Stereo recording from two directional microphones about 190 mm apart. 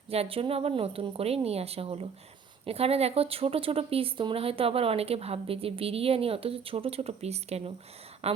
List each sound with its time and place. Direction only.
0.1 s speech: 30° right (ahead or behind)